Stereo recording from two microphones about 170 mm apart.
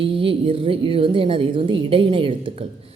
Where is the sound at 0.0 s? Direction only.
30° right (ahead or behind).